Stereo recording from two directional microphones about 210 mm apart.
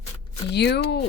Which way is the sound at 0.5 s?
55° left (ahead or behind).